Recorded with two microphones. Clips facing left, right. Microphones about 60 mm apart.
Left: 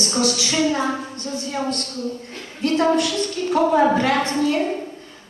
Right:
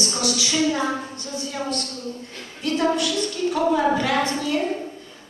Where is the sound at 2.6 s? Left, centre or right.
Left.